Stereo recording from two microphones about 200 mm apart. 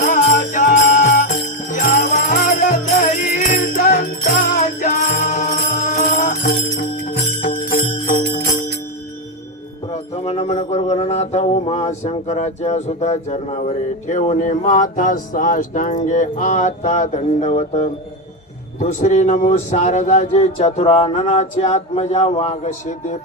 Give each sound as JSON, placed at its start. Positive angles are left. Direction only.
{"t": 0.0, "sound": "jingle bell", "side_deg": 40}
{"t": 9.9, "sound": "music", "side_deg": 30}
{"t": 10.7, "sound": "speech", "side_deg": 35}